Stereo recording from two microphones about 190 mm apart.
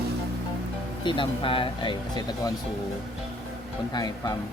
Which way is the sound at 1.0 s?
25° left (ahead or behind).